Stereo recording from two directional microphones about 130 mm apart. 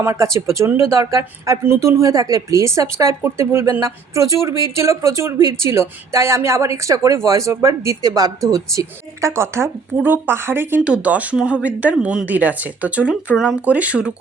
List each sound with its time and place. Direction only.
0.0 s speech: 20° right (ahead or behind)